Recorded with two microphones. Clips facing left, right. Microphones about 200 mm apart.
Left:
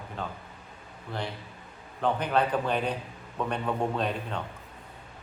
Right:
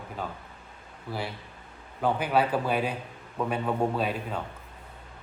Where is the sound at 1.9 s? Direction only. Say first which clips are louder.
Right 1 dB; 5° right (ahead or behind).